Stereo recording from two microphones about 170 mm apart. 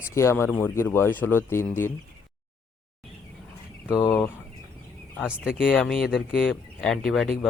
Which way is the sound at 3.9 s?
10° left (ahead or behind).